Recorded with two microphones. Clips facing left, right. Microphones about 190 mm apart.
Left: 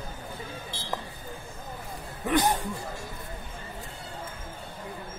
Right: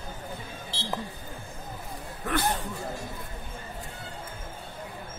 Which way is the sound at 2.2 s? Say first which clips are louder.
Left 4 dB; 15° left (ahead or behind).